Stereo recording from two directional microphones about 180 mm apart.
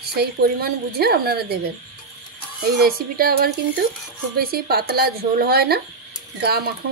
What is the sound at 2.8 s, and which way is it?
Speech, 55° right (ahead or behind).